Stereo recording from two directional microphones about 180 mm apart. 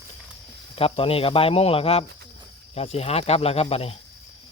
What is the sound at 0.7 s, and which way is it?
Speech, 30° left (ahead or behind).